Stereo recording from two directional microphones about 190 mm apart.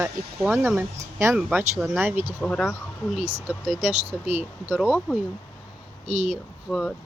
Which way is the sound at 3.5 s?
5° right (ahead or behind).